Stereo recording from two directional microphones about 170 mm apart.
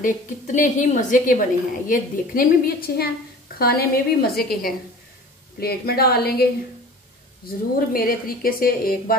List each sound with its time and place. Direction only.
0.0 s a woman's voice: 50° left (ahead or behind); by 6.4 s 65° left (ahead or behind)
7.4 s a woman's voice: 60° left (ahead or behind)